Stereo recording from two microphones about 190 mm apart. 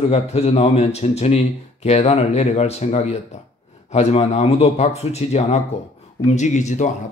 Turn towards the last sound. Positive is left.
turn(degrees=40)  # may be behind; listen again after turning